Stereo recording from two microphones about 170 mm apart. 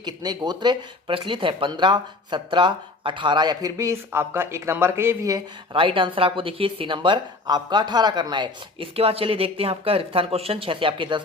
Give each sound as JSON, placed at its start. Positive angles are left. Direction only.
{"t": 0.0, "sound": "speech", "side_deg": -25}